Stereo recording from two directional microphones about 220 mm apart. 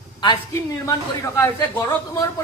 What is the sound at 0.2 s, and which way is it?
A woman's voice, 20° left (ahead or behind).